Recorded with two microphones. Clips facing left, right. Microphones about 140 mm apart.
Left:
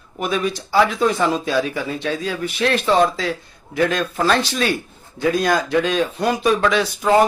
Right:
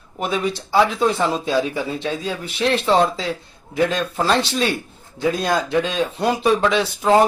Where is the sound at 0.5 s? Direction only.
25° right (ahead or behind).